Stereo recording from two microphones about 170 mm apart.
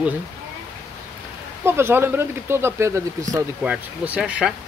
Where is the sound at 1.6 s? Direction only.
15° right (ahead or behind).